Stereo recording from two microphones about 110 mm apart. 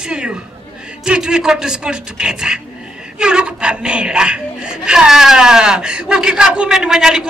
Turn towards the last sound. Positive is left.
turn(degrees=-5)  # may be behind; listen again after turning